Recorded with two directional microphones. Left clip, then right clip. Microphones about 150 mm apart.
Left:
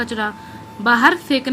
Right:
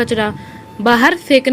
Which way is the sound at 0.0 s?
35° right (ahead or behind).